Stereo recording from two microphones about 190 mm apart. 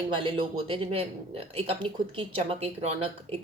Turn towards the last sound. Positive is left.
turn(degrees=-30)  # may be behind; listen again after turning